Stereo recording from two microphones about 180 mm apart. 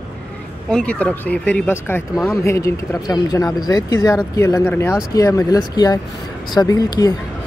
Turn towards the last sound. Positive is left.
turn(degrees=20)  # may be behind; listen again after turning